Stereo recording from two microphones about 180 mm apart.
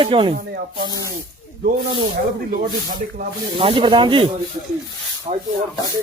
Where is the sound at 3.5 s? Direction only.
30° right (ahead or behind).